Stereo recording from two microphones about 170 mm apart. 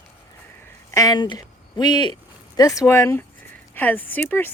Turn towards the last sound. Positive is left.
turn(degrees=10)  # may be behind; listen again after turning